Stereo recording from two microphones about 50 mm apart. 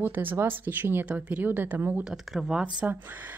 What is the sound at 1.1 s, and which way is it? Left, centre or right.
Speech, right.